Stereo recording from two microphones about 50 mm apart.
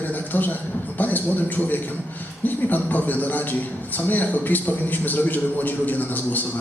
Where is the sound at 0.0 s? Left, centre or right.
Left.